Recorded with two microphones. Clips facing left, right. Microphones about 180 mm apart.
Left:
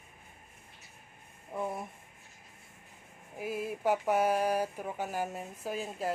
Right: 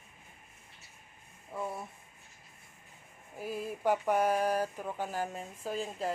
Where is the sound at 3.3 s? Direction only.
10° left (ahead or behind).